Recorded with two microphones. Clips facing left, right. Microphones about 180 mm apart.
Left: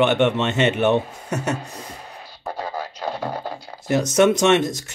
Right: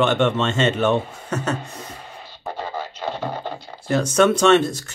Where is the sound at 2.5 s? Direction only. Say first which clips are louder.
Even; 10° left (ahead or behind).